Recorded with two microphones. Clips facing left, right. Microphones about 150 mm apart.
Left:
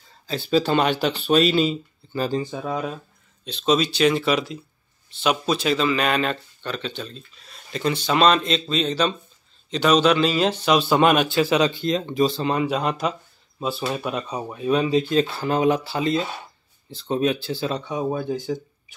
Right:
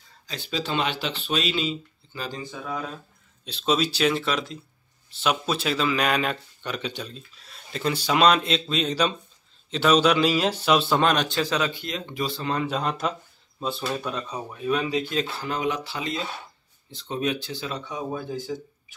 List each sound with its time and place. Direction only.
0.5 s speech: 45° left (ahead or behind)
3.4 s speech: 5° right (ahead or behind)
11.8 s speech: 30° left (ahead or behind)
12.5 s speech: 5° left (ahead or behind); by 15.2 s 30° left (ahead or behind)
15.4 s speech: 40° left (ahead or behind)
17.8 s speech: 25° left (ahead or behind)